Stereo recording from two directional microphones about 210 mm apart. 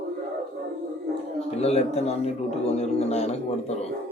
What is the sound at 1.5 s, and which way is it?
A man's voice, 30° left (ahead or behind).